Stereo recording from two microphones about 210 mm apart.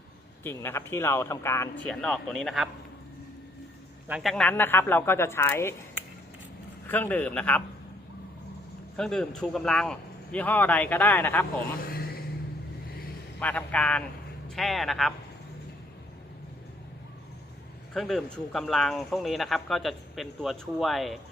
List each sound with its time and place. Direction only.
0.4 s a man's voice: 10° left (ahead or behind)
4.1 s a man's voice: centre (ahead or behind)
6.8 s a man's voice: 10° left (ahead or behind)
9.0 s a man's voice: 5° left (ahead or behind)
11.8 s a sound: 45° left (ahead or behind)
13.4 s a man's voice: 5° left (ahead or behind)
17.9 s speech: centre (ahead or behind)